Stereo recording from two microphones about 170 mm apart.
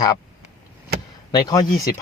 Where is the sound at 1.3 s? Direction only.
25° left (ahead or behind).